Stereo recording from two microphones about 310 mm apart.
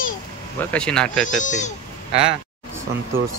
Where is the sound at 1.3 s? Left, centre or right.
Left.